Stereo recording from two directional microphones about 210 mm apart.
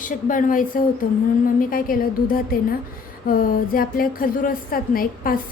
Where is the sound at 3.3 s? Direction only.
40° left (ahead or behind).